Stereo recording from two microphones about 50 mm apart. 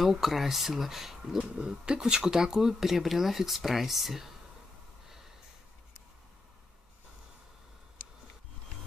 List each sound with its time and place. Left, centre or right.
0.2 s speech: centre
1.4 s speech: right; by 4.3 s centre